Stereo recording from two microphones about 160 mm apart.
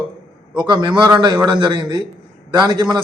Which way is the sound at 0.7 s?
30° right (ahead or behind).